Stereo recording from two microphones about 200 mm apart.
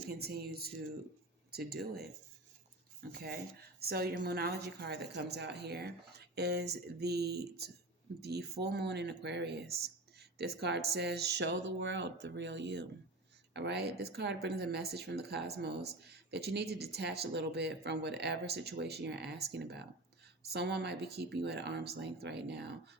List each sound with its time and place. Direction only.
0.2 s a woman's voice: 50° right (ahead or behind)
3.1 s a woman's voice: 50° right (ahead or behind)